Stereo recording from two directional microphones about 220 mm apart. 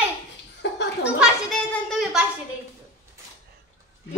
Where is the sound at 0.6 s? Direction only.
50° left (ahead or behind).